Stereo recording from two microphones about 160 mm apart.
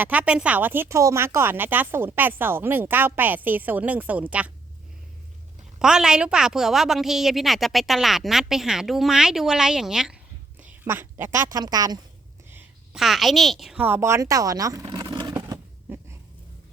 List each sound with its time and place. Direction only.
0.0 s speech: 10° right (ahead or behind)
5.8 s a woman's voice: 5° right (ahead or behind); by 11.9 s 25° right (ahead or behind)
12.5 s a sound: 15° right (ahead or behind)
13.0 s a woman's voice: centre (ahead or behind)
13.8 s speech: 15° right (ahead or behind)
14.8 s a sound: 30° right (ahead or behind)